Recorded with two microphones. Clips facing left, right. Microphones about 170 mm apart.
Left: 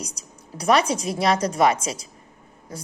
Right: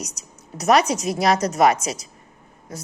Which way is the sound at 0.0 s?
30° left (ahead or behind).